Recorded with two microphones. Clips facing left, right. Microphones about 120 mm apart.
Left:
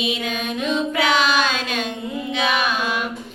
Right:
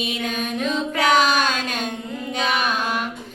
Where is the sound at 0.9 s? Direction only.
45° right (ahead or behind).